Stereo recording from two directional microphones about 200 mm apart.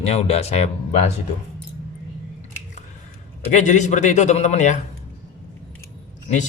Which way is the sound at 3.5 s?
35° left (ahead or behind).